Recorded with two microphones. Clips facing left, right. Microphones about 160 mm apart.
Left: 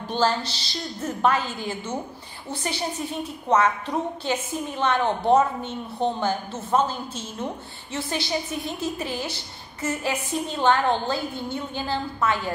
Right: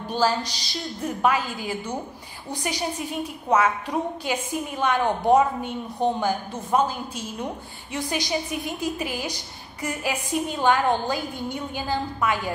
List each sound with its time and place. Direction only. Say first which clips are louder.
0.1 s a woman's voice: even; 10° right (ahead or behind)